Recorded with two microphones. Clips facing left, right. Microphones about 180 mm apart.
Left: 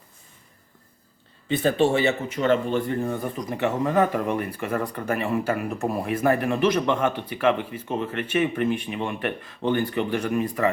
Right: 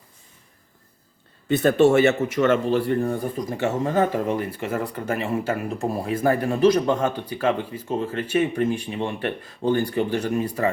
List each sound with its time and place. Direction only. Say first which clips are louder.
1.5 s speech: right 4 dB; 45° right (ahead or behind)
3.6 s speech: even; 25° right (ahead or behind)